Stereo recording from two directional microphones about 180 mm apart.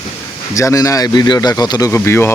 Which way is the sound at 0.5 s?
15° left (ahead or behind).